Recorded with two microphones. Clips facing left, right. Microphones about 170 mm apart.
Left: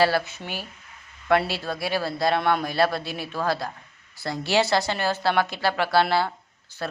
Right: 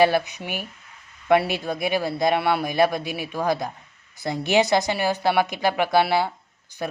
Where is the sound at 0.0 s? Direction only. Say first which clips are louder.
Right 3 dB; 20° right (ahead or behind).